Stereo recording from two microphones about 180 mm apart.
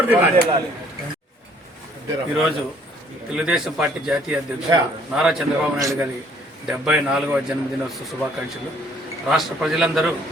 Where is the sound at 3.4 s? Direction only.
5° right (ahead or behind).